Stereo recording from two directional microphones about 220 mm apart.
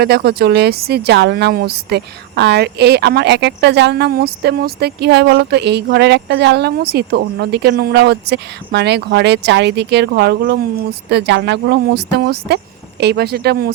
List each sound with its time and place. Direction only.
0.0 s a woman's voice: 45° right (ahead or behind)